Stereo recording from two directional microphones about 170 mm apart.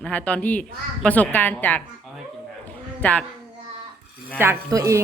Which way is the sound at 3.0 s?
10° left (ahead or behind).